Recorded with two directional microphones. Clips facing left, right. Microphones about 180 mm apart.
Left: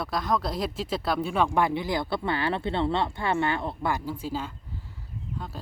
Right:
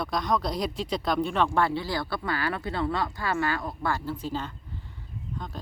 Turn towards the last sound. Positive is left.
turn(degrees=5)  # may be behind; listen again after turning